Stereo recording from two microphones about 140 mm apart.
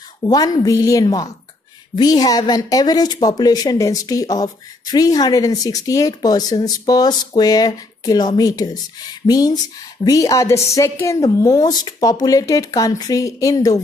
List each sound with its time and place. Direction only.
0.2 s speech: 25° left (ahead or behind)